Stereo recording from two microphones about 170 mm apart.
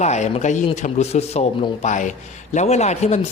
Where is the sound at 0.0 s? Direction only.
40° left (ahead or behind).